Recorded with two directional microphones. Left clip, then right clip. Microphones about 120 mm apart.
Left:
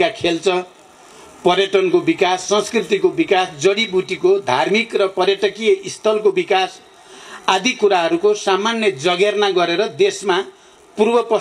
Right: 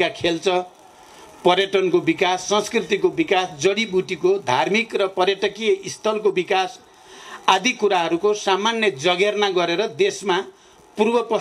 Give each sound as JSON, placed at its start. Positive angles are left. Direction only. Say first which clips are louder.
{"t": 0.0, "sound": "speech", "louder": "left 4 dB", "side_deg": -20}